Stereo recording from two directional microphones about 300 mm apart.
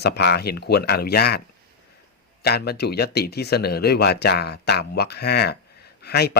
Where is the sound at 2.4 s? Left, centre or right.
Left.